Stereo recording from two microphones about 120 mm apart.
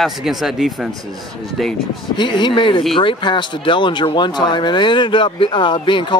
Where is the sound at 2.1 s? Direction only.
40° left (ahead or behind).